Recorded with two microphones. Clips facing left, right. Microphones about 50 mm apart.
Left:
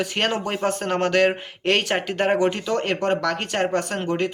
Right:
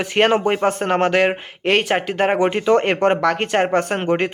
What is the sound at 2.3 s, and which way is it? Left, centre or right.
Speech, right.